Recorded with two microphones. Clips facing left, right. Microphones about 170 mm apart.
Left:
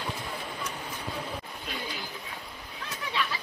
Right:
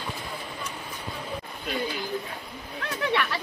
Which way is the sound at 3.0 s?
70° right (ahead or behind).